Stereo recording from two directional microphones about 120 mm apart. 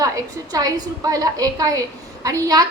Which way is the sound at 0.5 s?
30° right (ahead or behind).